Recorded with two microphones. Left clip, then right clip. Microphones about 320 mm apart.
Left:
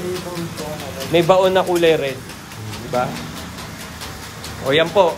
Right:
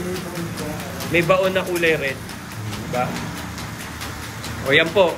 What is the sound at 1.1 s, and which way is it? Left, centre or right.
Speech, centre.